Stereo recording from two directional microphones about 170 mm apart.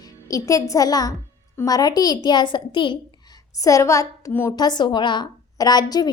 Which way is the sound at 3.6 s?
20° left (ahead or behind).